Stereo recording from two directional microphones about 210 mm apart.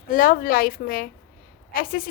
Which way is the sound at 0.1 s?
40° left (ahead or behind).